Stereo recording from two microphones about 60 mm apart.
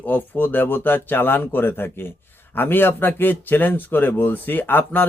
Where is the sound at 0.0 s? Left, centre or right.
Left.